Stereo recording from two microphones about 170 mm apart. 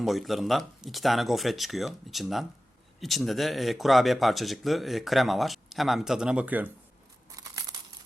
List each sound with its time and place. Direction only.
0.0 s speech: centre (ahead or behind)
7.3 s tearing: 20° right (ahead or behind)